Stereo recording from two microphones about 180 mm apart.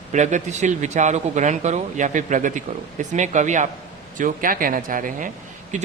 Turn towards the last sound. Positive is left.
turn(degrees=-45)  # may be behind; listen again after turning